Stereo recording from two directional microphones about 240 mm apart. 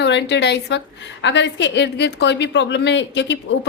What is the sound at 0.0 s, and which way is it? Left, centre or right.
A woman's voice, left.